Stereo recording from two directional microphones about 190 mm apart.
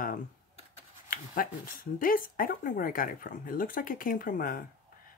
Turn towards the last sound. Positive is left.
turn(degrees=45)  # may be behind; listen again after turning